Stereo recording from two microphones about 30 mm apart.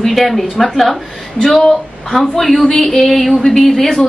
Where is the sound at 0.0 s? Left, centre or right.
Centre.